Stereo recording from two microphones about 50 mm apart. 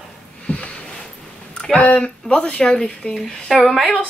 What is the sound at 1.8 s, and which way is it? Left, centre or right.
Speech, left.